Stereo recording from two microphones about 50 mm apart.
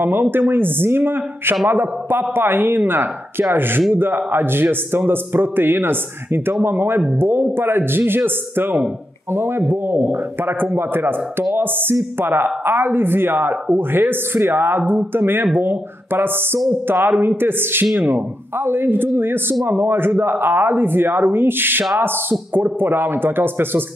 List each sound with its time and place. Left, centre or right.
0.0 s speech: right